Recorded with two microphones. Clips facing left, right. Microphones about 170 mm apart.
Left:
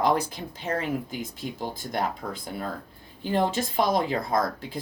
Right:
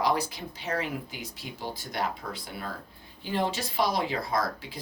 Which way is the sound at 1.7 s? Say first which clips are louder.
Left 1 dB; 50° left (ahead or behind).